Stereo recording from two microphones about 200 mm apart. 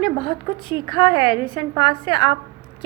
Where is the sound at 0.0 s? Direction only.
25° left (ahead or behind).